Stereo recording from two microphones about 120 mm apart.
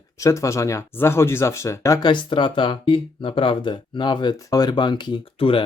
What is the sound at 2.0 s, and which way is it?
Speech, 40° left (ahead or behind).